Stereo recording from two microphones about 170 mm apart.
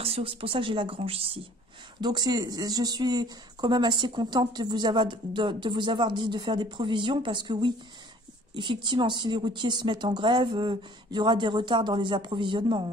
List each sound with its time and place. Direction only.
0.0 s speech: 35° right (ahead or behind)